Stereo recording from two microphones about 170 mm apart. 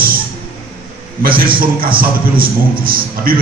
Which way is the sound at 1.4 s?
60° right (ahead or behind).